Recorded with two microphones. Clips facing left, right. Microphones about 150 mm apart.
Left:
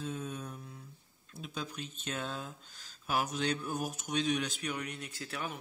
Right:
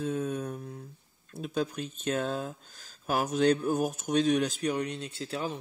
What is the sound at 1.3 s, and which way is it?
Speech, 50° right (ahead or behind).